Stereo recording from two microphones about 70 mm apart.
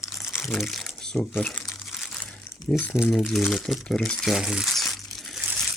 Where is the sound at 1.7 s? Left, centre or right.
Centre.